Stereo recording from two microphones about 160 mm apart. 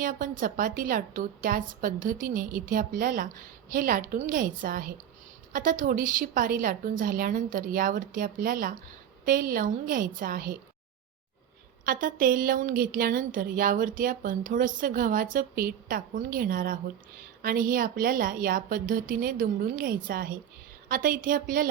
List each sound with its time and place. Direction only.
0.0 s speech: 55° right (ahead or behind)
11.9 s speech: 60° right (ahead or behind)